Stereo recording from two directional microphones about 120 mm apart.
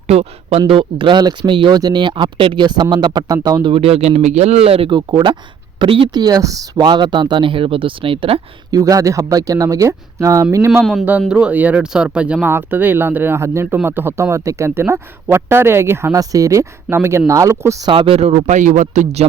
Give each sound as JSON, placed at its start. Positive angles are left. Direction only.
{"t": 0.1, "sound": "speech", "side_deg": -60}
{"t": 0.7, "sound": "speech", "side_deg": -45}
{"t": 8.7, "sound": "speech", "side_deg": -30}
{"t": 10.7, "sound": "speech", "side_deg": 0}
{"t": 17.8, "sound": "speech", "side_deg": -45}
{"t": 18.4, "sound": "speech", "side_deg": -90}